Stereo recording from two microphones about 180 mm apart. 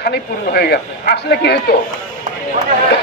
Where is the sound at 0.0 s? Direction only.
65° left (ahead or behind).